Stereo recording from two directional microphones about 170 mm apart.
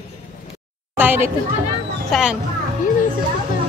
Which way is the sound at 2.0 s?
Centre (ahead or behind).